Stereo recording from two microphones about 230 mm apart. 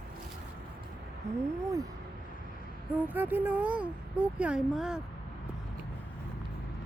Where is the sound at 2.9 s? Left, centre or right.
Centre.